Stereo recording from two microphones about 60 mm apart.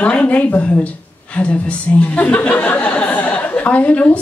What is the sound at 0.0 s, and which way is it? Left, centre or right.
A woman's voice, left.